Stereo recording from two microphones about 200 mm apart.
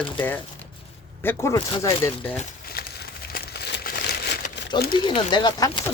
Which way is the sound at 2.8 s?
50° left (ahead or behind).